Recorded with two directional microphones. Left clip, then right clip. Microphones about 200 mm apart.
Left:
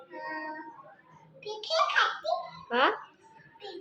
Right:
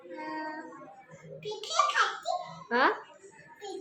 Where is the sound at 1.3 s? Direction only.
15° right (ahead or behind).